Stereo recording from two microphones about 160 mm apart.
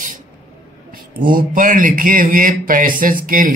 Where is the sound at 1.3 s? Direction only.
60° right (ahead or behind).